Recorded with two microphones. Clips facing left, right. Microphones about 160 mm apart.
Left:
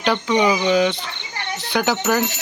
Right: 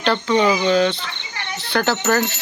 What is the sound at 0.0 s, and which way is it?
Speech, 10° left (ahead or behind).